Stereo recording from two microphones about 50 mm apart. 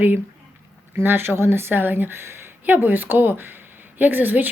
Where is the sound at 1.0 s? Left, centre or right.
Right.